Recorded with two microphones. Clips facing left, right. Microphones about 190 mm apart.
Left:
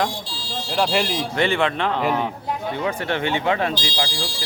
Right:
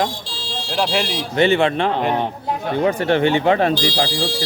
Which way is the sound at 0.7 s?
Centre (ahead or behind).